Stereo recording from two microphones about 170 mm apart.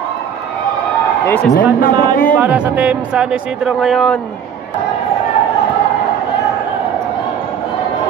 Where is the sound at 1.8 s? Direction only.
60° left (ahead or behind).